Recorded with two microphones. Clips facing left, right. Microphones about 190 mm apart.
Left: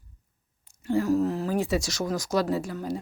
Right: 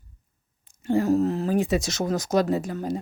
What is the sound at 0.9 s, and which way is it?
Speech, 20° right (ahead or behind).